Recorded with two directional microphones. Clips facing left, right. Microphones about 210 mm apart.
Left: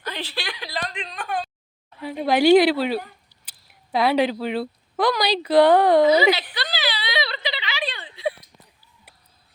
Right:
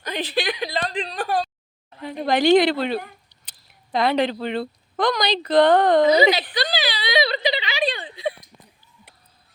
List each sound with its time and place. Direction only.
0.0 s a woman's voice: 20° right (ahead or behind); by 1.5 s 35° right (ahead or behind)
2.0 s speech: 5° left (ahead or behind)
6.7 s a sound: 15° right (ahead or behind)